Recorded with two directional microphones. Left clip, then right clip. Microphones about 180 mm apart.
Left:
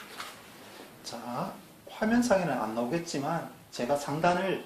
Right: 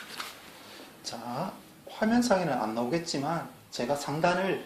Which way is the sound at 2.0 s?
30° right (ahead or behind).